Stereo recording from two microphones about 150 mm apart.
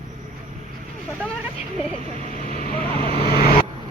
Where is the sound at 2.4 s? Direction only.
65° left (ahead or behind).